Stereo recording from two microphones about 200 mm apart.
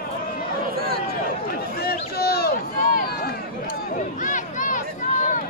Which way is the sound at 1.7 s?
50° left (ahead or behind).